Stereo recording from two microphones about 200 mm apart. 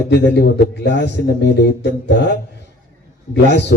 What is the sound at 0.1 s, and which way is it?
A man's voice, 60° left (ahead or behind).